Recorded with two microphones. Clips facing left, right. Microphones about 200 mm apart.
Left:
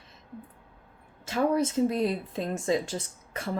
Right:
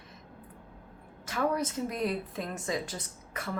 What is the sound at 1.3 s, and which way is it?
A woman's voice, 25° left (ahead or behind).